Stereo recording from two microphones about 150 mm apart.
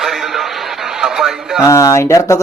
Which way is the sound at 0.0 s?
Centre (ahead or behind).